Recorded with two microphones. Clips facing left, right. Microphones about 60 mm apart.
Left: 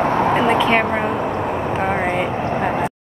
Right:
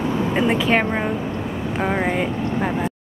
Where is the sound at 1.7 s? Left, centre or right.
Centre.